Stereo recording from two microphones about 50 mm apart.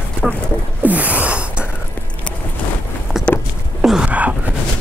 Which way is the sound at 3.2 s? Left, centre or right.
Centre.